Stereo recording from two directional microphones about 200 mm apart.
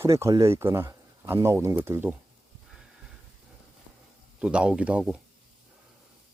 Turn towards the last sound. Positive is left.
turn(degrees=-5)  # may be behind; listen again after turning